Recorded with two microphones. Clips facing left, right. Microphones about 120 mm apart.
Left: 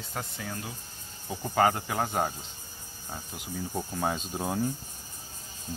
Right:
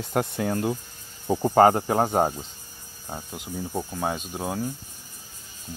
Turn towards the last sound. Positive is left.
turn(degrees=-5)  # may be behind; listen again after turning